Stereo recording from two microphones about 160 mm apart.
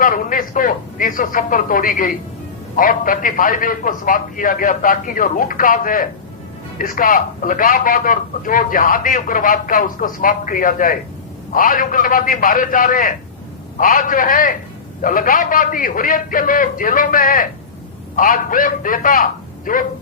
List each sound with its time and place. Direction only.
0.0 s a man's voice: 60° left (ahead or behind)